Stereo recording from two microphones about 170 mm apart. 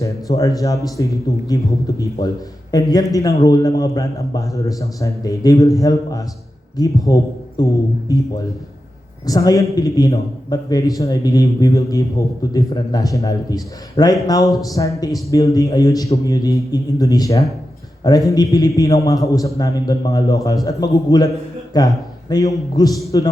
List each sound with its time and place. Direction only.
0.0 s a sound: 20° left (ahead or behind)
0.6 s a man's voice: 20° left (ahead or behind)
9.2 s a man's voice: 20° left (ahead or behind)